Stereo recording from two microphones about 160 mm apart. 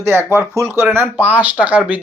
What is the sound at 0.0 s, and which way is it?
Speech, 15° right (ahead or behind).